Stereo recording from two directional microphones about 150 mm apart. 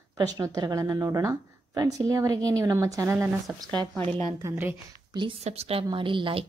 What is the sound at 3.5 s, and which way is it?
Speech, 5° right (ahead or behind).